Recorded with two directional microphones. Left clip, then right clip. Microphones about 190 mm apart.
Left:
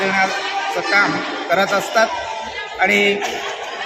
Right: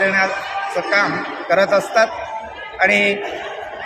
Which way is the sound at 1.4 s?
20° right (ahead or behind).